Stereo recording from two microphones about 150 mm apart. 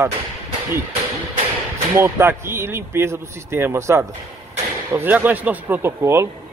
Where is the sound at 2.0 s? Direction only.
15° right (ahead or behind).